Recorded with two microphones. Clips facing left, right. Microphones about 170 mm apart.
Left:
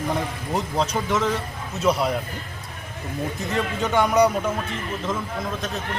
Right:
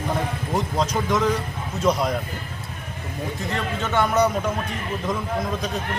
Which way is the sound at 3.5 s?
20° left (ahead or behind).